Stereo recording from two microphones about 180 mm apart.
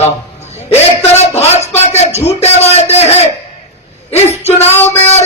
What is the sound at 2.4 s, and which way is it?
A man's voice, 35° left (ahead or behind).